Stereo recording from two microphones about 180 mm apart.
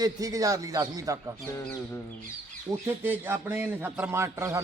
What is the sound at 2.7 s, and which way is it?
A man's voice, 15° right (ahead or behind).